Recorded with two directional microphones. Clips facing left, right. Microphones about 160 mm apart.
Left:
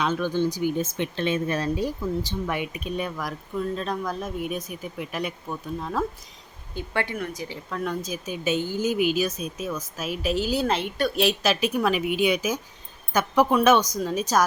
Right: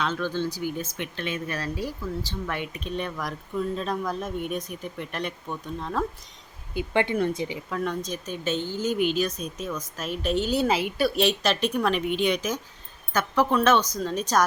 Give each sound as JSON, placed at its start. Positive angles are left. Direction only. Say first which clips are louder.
{"t": 0.0, "sound": "speech", "louder": "left 3 dB", "side_deg": 15}
{"t": 6.7, "sound": "speech", "louder": "right 4 dB", "side_deg": -20}
{"t": 7.7, "sound": "speech", "louder": "left 3 dB", "side_deg": 0}